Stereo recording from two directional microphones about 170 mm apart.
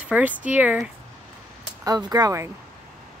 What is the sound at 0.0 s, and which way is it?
Speech, 10° right (ahead or behind).